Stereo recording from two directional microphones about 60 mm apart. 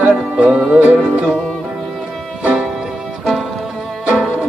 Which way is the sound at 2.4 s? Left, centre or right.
Centre.